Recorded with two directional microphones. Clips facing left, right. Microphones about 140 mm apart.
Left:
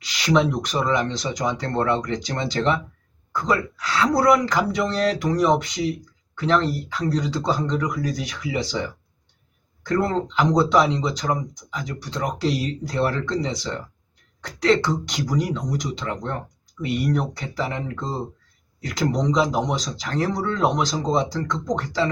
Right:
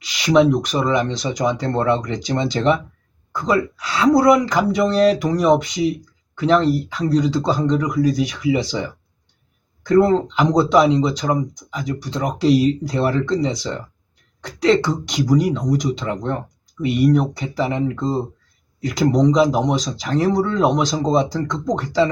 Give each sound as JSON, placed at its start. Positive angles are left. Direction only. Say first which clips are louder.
{"t": 0.2, "sound": "speech", "louder": "right 6 dB", "side_deg": -15}
{"t": 10.0, "sound": "speech", "louder": "right 6 dB", "side_deg": -20}